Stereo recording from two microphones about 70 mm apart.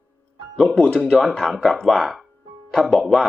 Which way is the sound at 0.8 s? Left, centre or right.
Centre.